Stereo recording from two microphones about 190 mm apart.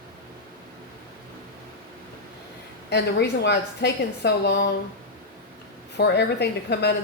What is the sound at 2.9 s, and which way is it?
A woman's voice, 65° left (ahead or behind).